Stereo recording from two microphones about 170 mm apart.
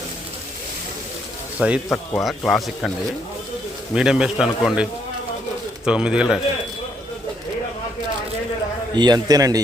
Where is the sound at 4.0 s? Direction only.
5° right (ahead or behind).